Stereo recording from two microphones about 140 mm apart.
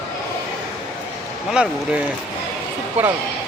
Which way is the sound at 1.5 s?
5° right (ahead or behind).